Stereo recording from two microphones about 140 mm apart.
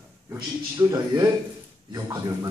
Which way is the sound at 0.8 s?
20° right (ahead or behind).